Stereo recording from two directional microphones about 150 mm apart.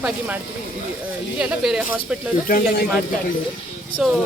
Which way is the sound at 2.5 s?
65° left (ahead or behind).